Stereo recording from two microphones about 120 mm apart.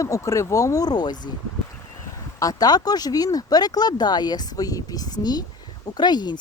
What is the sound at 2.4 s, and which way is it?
Speech, 30° left (ahead or behind).